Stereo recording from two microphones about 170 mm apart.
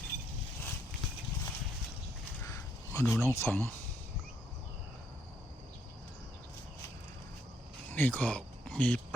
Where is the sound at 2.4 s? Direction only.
15° left (ahead or behind).